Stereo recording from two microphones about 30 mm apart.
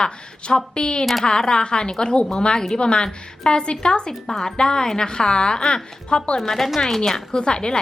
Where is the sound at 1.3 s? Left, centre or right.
Left.